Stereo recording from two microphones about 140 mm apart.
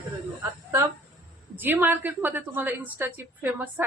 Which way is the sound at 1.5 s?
15° right (ahead or behind).